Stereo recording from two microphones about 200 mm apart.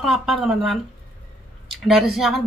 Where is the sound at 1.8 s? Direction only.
Centre (ahead or behind).